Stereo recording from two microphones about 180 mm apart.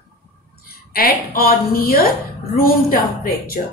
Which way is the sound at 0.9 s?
55° left (ahead or behind).